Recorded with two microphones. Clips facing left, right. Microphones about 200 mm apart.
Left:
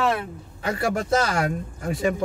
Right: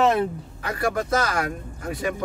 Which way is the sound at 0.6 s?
25° left (ahead or behind).